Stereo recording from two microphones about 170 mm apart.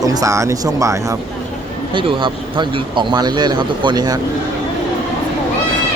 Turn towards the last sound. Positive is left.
turn(degrees=-25)  # may be behind; listen again after turning